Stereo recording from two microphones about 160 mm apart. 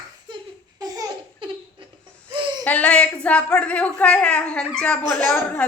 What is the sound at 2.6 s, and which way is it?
A woman's voice, 10° left (ahead or behind).